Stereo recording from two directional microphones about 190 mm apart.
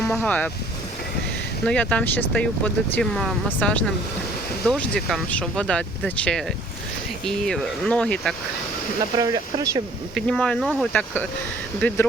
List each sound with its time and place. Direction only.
0.1 s speech: 5° left (ahead or behind)
1.6 s speech: 5° left (ahead or behind)
9.1 s speech: 20° right (ahead or behind)
10.2 s speech: 5° left (ahead or behind)